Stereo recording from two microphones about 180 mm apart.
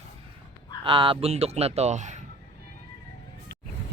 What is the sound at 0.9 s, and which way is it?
Speech, 30° right (ahead or behind).